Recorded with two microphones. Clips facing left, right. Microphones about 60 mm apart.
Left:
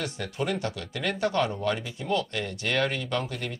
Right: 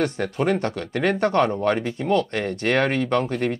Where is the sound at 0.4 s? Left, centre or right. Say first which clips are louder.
Right 7 dB; right.